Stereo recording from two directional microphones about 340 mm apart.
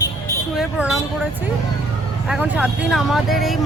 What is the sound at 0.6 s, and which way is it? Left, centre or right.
Speech, centre.